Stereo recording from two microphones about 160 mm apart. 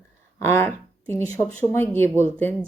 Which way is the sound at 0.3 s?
15° left (ahead or behind).